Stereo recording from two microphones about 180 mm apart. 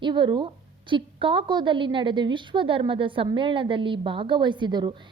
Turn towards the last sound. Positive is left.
turn(degrees=-25)  # may be behind; listen again after turning